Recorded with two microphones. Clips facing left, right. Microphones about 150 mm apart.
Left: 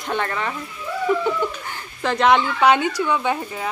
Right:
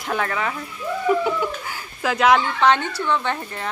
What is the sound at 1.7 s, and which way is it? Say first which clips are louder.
Speech: left 1 dB; 5° right (ahead or behind).